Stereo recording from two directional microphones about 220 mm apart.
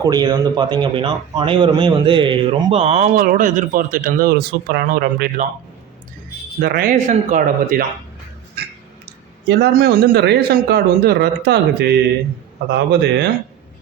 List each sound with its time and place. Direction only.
0.0 s speech: 20° right (ahead or behind); by 5.5 s 45° right (ahead or behind)
6.6 s speech: 45° right (ahead or behind)
9.5 s speech: 45° right (ahead or behind)